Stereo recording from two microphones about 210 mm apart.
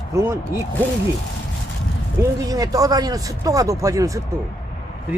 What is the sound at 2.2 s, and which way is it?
Speech, 15° right (ahead or behind).